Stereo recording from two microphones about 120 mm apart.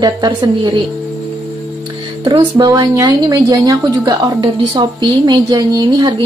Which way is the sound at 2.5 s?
30° right (ahead or behind).